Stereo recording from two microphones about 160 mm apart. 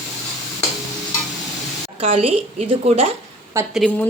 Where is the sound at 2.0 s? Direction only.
35° right (ahead or behind).